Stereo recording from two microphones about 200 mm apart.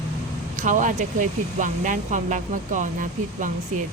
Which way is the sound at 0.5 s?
40° right (ahead or behind).